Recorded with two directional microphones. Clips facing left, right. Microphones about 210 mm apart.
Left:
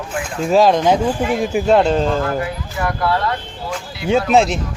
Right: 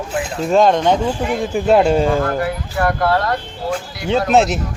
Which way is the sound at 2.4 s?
55° right (ahead or behind).